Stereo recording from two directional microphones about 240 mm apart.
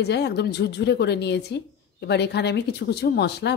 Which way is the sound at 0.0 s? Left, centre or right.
Left.